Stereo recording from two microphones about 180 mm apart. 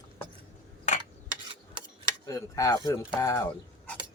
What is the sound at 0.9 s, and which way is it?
Rub, 40° left (ahead or behind).